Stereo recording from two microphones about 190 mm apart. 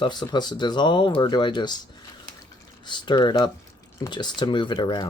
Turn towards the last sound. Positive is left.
turn(degrees=25)  # may be behind; listen again after turning